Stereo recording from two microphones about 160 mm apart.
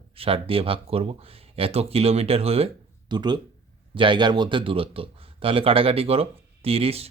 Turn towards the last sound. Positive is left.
turn(degrees=-40)  # may be behind; listen again after turning